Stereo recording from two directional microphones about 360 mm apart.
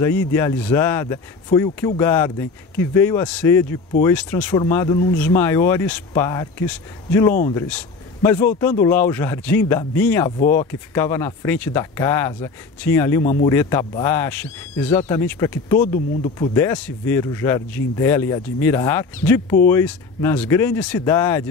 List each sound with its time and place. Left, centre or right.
0.0 s a man's voice: centre
13.2 s speech: centre